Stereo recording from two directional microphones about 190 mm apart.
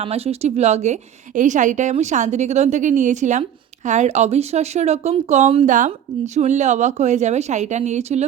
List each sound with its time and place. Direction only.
0.0 s speech: 30° right (ahead or behind)